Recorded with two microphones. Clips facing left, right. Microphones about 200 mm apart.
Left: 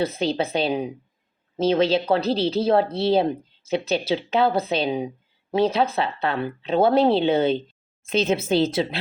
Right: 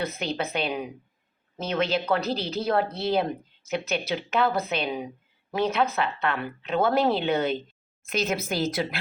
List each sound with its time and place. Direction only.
0.0 s speech: 30° left (ahead or behind)